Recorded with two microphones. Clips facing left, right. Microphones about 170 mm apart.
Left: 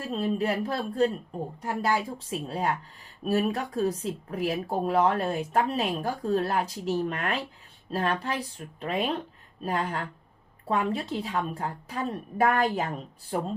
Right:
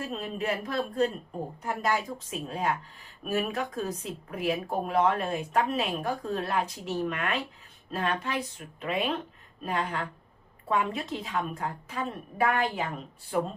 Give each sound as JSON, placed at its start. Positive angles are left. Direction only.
{"t": 0.0, "sound": "speech", "side_deg": 35}